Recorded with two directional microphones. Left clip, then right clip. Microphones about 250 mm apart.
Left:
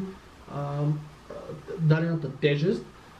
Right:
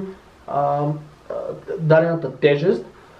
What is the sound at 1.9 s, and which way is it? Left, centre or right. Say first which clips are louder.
Speech: right 14 dB; centre.